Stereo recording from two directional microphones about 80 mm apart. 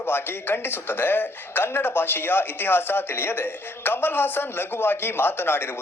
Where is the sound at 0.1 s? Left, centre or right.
Left.